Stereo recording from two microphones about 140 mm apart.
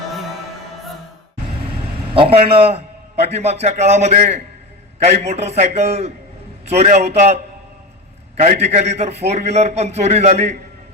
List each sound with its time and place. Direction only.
2.1 s a man's voice: 40° right (ahead or behind)
8.4 s a man's voice: 55° right (ahead or behind)